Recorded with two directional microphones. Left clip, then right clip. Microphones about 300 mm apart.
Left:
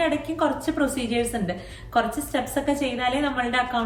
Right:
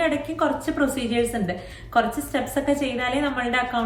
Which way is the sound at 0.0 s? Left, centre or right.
Centre.